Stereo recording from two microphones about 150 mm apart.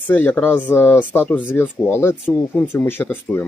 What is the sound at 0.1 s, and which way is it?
Speech, 10° left (ahead or behind).